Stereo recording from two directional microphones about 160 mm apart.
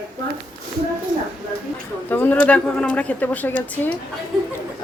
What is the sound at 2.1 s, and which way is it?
Speech, 10° left (ahead or behind).